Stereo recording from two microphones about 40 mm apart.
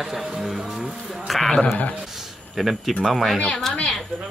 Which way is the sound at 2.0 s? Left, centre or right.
Centre.